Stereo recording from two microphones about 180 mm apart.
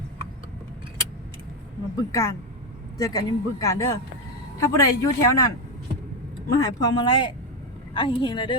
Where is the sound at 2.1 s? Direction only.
15° left (ahead or behind).